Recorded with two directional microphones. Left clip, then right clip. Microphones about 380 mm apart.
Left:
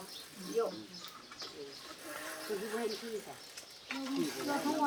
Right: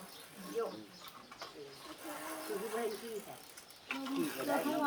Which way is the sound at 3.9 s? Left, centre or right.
Right.